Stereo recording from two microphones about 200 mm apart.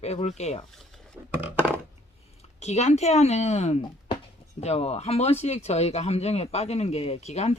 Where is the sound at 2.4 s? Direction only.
35° left (ahead or behind).